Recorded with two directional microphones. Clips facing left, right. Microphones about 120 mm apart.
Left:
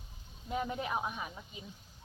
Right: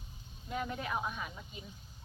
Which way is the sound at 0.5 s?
15° left (ahead or behind).